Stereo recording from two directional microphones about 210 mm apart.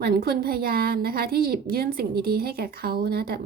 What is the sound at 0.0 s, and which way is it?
A woman's voice, 45° right (ahead or behind).